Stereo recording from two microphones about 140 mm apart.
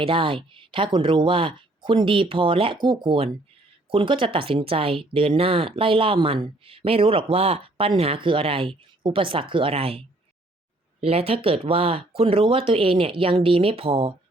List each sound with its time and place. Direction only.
0.0 s speech: 40° right (ahead or behind)